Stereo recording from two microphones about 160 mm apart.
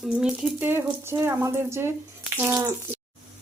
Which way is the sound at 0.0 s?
5° right (ahead or behind).